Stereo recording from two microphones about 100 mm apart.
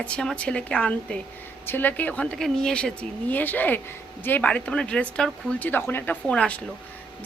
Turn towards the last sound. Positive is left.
turn(degrees=10)  # may be behind; listen again after turning